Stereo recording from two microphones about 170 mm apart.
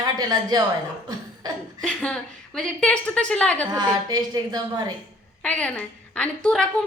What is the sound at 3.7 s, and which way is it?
A woman's voice, 25° right (ahead or behind).